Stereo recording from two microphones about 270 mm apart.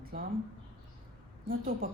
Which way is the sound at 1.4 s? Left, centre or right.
Right.